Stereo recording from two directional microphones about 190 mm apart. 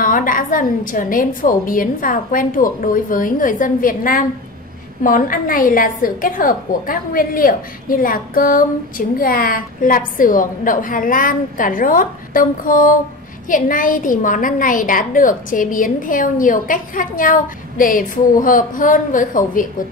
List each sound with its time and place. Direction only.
0.0 s a woman's voice: 45° left (ahead or behind)